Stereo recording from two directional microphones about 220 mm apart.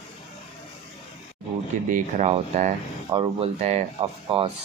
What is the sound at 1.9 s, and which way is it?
Speech, 30° right (ahead or behind).